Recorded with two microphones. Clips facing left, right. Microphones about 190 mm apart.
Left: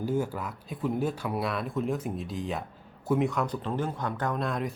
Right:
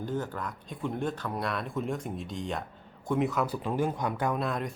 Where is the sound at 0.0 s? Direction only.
10° left (ahead or behind).